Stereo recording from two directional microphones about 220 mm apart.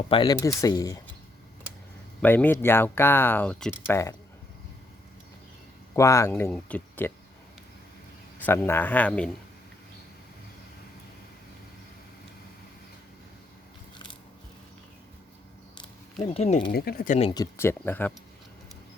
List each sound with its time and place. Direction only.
0.1 s speech: 20° left (ahead or behind)
2.2 s speech: 10° left (ahead or behind)
6.0 s speech: 15° left (ahead or behind)
8.4 s speech: 10° left (ahead or behind)
15.7 s a sound: 25° left (ahead or behind)
16.7 s speech: 45° left (ahead or behind)
17.2 s speech: 20° left (ahead or behind)